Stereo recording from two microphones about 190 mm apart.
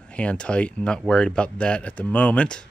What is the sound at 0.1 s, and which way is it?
Speech, 5° left (ahead or behind).